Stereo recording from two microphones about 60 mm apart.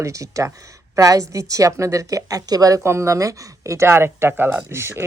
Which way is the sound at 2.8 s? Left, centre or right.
Right.